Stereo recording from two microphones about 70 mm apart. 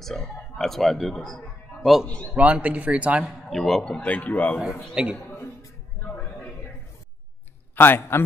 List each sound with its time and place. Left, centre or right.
0.0 s a man's voice: centre
2.0 s a man's voice: centre
2.3 s speech: centre
3.4 s a man's voice: centre; by 4.6 s left
5.0 s a woman's voice: centre
7.7 s a man's voice: left